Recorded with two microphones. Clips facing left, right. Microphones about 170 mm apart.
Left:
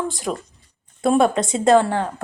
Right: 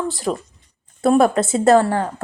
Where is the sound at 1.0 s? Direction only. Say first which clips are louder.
Right 2 dB; 5° right (ahead or behind).